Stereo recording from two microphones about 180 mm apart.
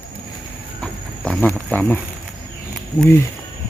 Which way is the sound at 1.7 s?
10° left (ahead or behind).